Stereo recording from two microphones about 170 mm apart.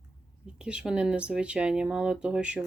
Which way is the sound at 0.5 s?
5° right (ahead or behind).